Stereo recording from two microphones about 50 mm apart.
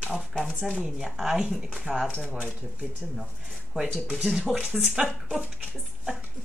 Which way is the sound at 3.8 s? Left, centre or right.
Centre.